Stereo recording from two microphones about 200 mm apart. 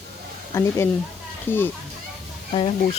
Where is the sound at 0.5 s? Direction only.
10° left (ahead or behind).